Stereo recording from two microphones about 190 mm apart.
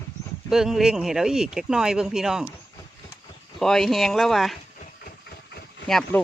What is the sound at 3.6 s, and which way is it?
Speech, centre (ahead or behind).